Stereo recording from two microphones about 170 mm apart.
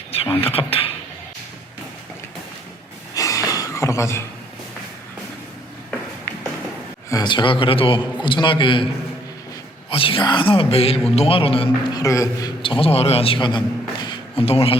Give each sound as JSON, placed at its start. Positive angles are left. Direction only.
{"t": 0.1, "sound": "speech", "side_deg": 35}
{"t": 3.2, "sound": "a sound", "side_deg": 20}
{"t": 7.1, "sound": "a man's voice", "side_deg": 25}
{"t": 9.9, "sound": "speech", "side_deg": 35}
{"t": 12.0, "sound": "a man's voice", "side_deg": 20}
{"t": 12.6, "sound": "speech", "side_deg": 30}
{"t": 14.0, "sound": "a sound", "side_deg": 30}